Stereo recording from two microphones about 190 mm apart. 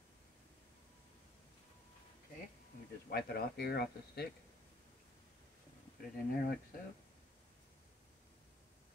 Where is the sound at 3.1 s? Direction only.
55° left (ahead or behind).